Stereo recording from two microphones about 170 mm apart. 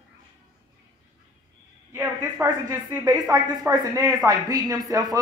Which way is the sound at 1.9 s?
15° right (ahead or behind).